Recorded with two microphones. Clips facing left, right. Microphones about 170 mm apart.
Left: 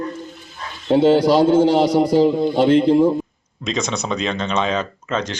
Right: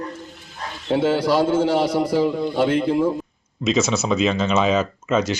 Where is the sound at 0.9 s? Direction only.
30° left (ahead or behind).